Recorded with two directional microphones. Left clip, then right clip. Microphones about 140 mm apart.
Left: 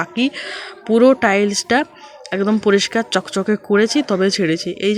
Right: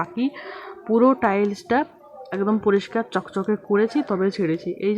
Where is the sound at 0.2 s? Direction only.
20° left (ahead or behind).